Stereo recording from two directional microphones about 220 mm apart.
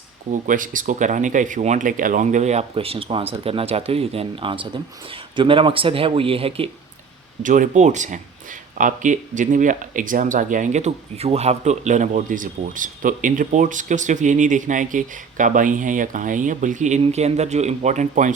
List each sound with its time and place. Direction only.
0.3 s speech: 35° right (ahead or behind)
7.4 s speech: 35° right (ahead or behind)